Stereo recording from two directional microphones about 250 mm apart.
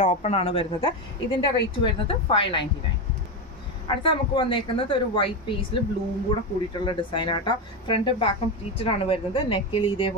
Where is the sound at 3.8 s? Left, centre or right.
Centre.